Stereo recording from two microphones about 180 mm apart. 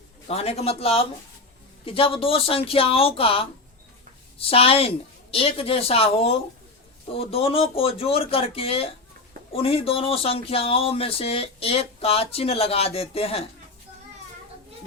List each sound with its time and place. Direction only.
0.3 s speech: 35° left (ahead or behind)